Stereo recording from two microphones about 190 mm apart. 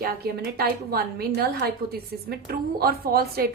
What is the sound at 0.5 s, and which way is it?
A woman's voice, 55° right (ahead or behind).